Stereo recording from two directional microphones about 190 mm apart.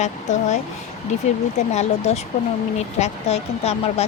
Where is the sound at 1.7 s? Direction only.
35° left (ahead or behind).